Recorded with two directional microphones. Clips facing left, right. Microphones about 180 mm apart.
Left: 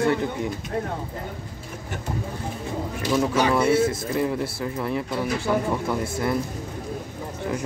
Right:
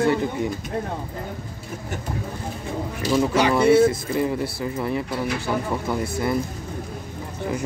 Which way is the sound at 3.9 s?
Centre (ahead or behind).